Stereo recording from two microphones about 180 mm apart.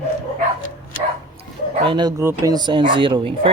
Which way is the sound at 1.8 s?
25° right (ahead or behind).